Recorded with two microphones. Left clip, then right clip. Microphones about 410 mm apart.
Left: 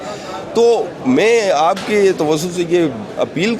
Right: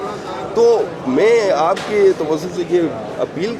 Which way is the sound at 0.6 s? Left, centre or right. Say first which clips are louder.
Even; left.